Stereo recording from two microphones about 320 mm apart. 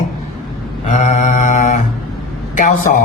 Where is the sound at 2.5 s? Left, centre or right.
Left.